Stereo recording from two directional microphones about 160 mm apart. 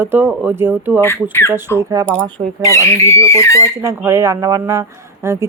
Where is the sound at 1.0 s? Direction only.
15° left (ahead or behind).